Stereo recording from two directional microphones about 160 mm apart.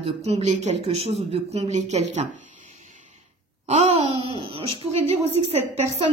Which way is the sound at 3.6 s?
45° right (ahead or behind).